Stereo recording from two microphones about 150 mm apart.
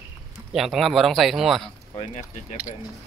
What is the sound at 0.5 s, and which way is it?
Speech, centre (ahead or behind).